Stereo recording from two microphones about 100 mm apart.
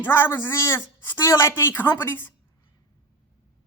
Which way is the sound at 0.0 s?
20° left (ahead or behind).